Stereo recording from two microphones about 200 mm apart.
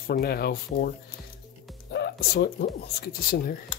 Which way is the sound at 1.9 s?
50° left (ahead or behind).